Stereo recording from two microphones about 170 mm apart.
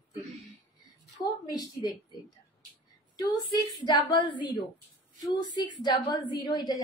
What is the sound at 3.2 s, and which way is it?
A woman's voice, 25° left (ahead or behind).